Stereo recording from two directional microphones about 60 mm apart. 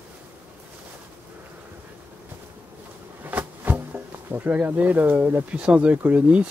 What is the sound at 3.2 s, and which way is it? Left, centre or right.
Bee, right.